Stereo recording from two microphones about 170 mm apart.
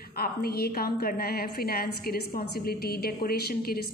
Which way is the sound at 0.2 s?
65° left (ahead or behind).